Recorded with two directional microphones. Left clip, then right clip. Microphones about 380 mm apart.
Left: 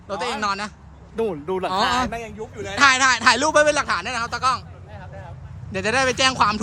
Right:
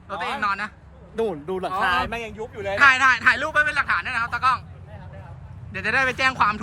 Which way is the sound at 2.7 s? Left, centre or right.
Centre.